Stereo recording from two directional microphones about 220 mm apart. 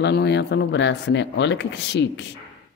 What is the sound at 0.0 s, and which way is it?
Speech, 50° left (ahead or behind).